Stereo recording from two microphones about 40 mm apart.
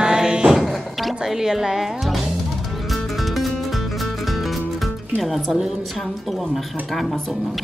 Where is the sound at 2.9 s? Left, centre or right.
Centre.